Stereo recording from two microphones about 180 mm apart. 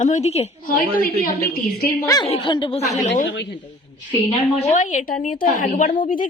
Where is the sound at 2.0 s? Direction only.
20° left (ahead or behind).